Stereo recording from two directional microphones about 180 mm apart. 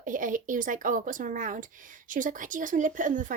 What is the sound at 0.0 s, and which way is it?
Speech, 45° right (ahead or behind).